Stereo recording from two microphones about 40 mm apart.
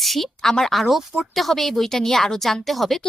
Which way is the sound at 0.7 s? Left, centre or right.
Centre.